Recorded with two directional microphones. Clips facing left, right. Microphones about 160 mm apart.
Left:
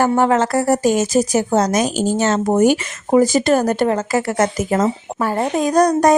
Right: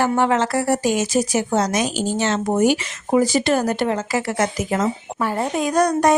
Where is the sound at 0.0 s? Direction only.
45° left (ahead or behind).